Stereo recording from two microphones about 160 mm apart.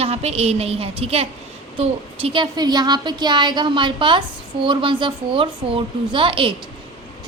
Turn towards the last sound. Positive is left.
turn(degrees=-35)  # may be behind; listen again after turning